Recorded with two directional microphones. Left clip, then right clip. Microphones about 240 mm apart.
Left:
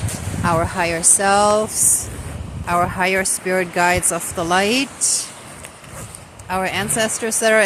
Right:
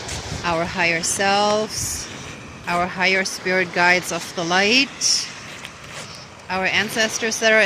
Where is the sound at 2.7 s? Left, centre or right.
Centre.